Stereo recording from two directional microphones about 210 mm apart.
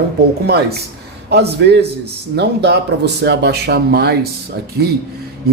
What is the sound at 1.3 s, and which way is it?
Speech, 50° right (ahead or behind).